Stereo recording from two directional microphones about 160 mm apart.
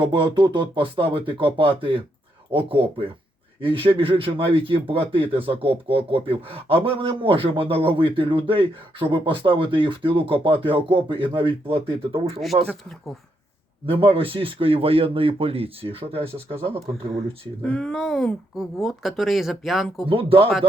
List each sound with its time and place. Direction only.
0.0 s speech: 30° right (ahead or behind)
14.0 s speech: 35° right (ahead or behind)
17.6 s speech: 5° left (ahead or behind)
20.1 s speech: 35° right (ahead or behind)